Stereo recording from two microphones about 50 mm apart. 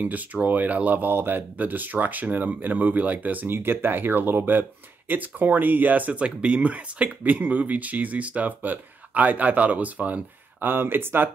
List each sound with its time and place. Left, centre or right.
0.0 s speech: right
3.5 s speech: right